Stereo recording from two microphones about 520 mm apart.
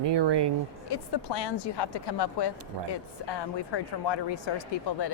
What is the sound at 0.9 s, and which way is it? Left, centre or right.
Speech, left.